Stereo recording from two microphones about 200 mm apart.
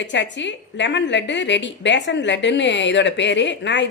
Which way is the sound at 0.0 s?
65° left (ahead or behind).